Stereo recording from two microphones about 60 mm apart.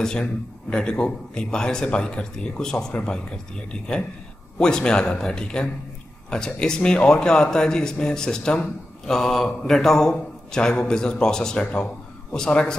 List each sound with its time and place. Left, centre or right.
0.0 s speech: centre
9.0 s mantra: centre
9.6 s a man's voice: centre